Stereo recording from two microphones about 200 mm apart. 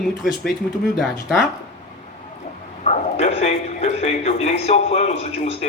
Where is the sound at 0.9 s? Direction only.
Centre (ahead or behind).